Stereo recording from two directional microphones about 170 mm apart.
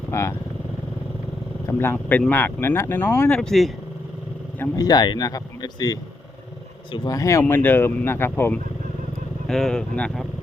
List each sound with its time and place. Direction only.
0.1 s speech: 15° left (ahead or behind)
1.6 s speech: 15° left (ahead or behind)
4.6 s speech: 20° left (ahead or behind)
9.5 s speech: centre (ahead or behind)